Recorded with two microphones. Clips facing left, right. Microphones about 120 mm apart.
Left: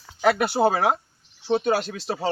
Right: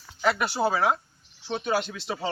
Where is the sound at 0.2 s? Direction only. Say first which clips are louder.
Left 5 dB; 60° left (ahead or behind).